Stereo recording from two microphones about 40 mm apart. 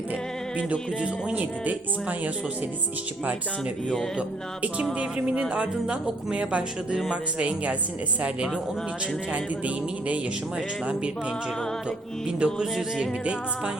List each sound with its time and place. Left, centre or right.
0.5 s a man's voice: right
4.2 s a man's voice: right
9.3 s a man's voice: right
12.4 s speech: right